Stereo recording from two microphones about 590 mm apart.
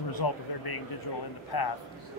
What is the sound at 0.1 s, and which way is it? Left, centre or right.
Speech, left.